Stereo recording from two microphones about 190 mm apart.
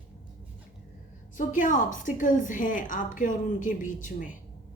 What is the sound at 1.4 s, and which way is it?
A woman's voice, 45° left (ahead or behind).